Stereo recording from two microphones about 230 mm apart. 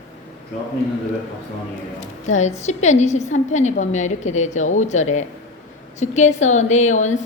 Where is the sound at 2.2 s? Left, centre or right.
Left.